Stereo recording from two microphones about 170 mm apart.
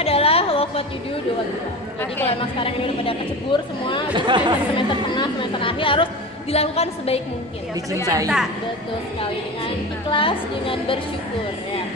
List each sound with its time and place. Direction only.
0.0 s a sound: 35° left (ahead or behind)
2.2 s a woman's voice: 35° left (ahead or behind)
4.1 s speech: 25° right (ahead or behind)
4.7 s a woman's voice: 30° left (ahead or behind)
7.9 s speech: 20° right (ahead or behind)
10.0 s a woman's voice: 30° left (ahead or behind)